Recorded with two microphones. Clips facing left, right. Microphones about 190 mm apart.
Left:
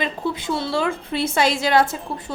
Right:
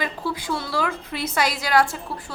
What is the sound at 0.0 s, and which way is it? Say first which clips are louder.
A woman's voice: left 3 dB; 25° left (ahead or behind).